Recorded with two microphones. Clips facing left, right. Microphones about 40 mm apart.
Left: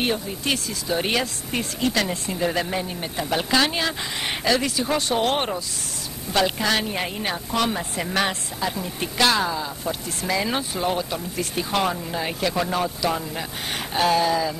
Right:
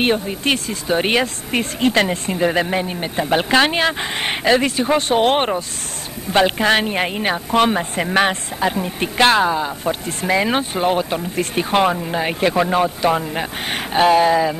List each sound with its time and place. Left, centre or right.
0.0 s a woman's voice: right